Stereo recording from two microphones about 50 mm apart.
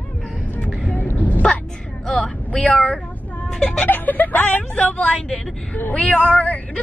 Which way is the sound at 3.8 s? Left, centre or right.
Left.